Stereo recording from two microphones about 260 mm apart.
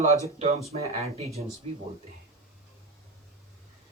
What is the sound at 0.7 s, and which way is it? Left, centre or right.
Speech, right.